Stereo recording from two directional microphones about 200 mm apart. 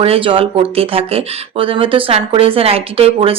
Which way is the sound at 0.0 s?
25° right (ahead or behind).